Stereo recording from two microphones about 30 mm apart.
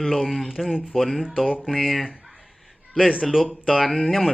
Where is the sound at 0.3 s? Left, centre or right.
Centre.